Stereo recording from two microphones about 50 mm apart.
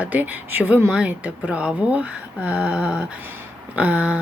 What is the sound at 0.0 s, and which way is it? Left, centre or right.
Speech, right.